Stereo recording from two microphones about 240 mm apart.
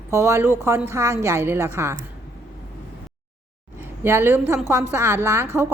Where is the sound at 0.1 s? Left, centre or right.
Centre.